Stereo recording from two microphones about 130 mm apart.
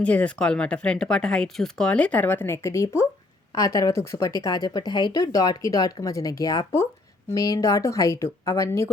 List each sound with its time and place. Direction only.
0.0 s speech: 10° left (ahead or behind)